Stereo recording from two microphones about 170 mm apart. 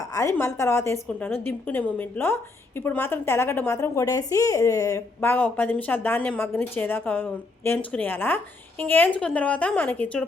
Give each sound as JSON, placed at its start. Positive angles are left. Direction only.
{"t": 0.1, "sound": "a woman's voice", "side_deg": 15}